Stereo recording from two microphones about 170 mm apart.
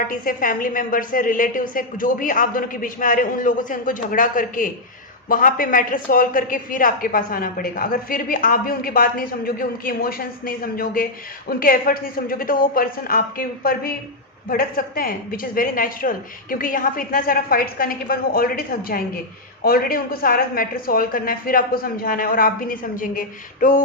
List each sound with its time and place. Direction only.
0.1 s a woman's voice: 55° left (ahead or behind)